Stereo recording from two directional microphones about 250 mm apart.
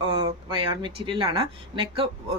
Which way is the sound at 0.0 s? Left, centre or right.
Centre.